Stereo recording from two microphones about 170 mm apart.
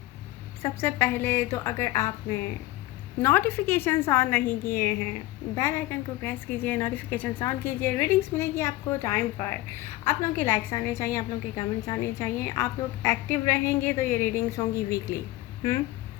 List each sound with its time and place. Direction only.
0.6 s a woman's voice: 15° left (ahead or behind)